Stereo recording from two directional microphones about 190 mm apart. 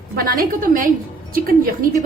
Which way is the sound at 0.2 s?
50° right (ahead or behind).